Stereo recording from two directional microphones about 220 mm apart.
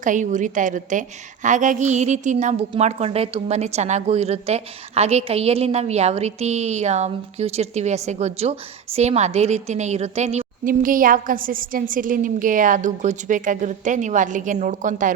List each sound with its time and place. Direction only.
0.0 s a woman's voice: 35° right (ahead or behind)